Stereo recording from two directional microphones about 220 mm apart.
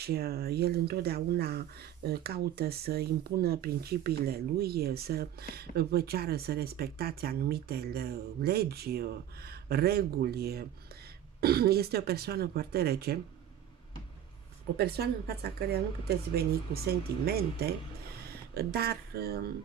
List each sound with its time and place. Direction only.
0.0 s speech: 45° right (ahead or behind)
14.8 s speech: 45° right (ahead or behind)